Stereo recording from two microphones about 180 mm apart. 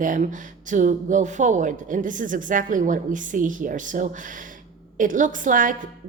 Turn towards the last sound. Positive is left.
turn(degrees=-50)  # may be behind; listen again after turning